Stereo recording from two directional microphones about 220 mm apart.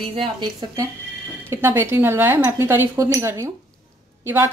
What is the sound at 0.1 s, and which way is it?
A woman's voice, 20° right (ahead or behind).